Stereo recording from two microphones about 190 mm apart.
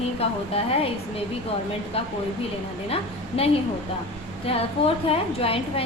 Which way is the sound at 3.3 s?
30° left (ahead or behind).